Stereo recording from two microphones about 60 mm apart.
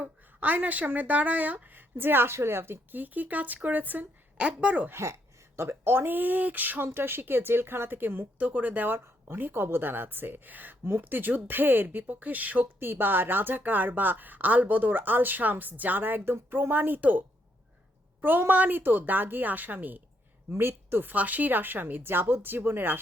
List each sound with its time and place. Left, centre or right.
0.0 s speech: right
2.9 s speech: right
4.9 s speech: right
6.8 s speech: right